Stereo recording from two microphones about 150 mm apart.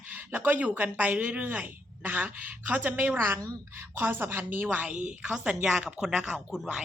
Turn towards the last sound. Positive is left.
turn(degrees=0)  # may be behind; listen again after turning